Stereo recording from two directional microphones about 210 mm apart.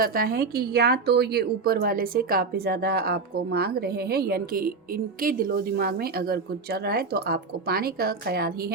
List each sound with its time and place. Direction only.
0.0 s a woman's voice: 45° right (ahead or behind)